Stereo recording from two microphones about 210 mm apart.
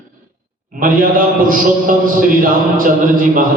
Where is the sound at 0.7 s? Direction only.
40° right (ahead or behind).